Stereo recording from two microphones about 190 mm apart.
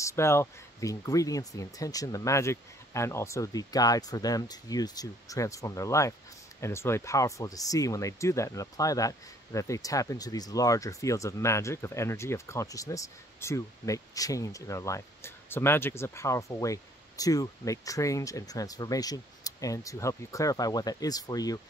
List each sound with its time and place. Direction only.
0.0 s speech: 15° left (ahead or behind)